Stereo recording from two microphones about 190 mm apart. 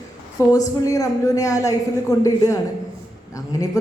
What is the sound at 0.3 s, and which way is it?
A woman's voice, 15° left (ahead or behind).